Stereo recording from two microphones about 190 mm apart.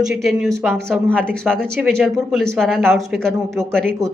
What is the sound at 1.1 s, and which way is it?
A woman's voice, 5° left (ahead or behind).